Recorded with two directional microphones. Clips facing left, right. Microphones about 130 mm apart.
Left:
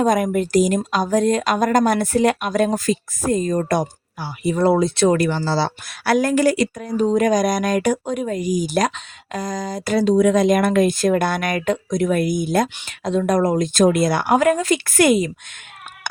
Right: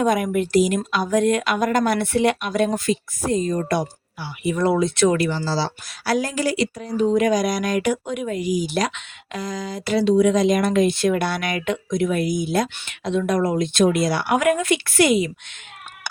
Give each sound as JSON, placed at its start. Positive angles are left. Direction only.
{"t": 0.0, "sound": "speech", "side_deg": 40}
{"t": 5.5, "sound": "speech", "side_deg": 60}
{"t": 14.3, "sound": "speech", "side_deg": 35}